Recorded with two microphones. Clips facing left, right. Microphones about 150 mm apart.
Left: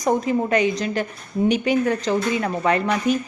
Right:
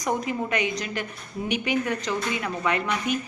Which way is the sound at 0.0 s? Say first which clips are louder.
Left 7 dB; 35° left (ahead or behind).